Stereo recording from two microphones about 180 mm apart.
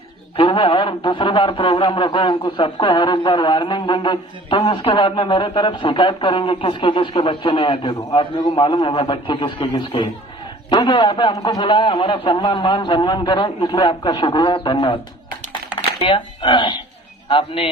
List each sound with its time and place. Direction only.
0.3 s speech: 25° left (ahead or behind)
16.0 s a man's voice: 30° left (ahead or behind)